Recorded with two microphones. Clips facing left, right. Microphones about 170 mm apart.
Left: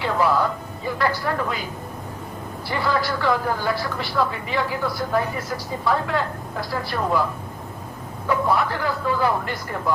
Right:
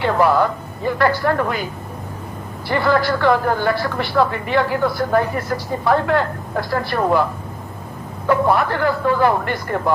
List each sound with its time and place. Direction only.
0.0 s speech: 60° right (ahead or behind)
2.6 s speech: 60° right (ahead or behind)
8.3 s speech: 60° right (ahead or behind)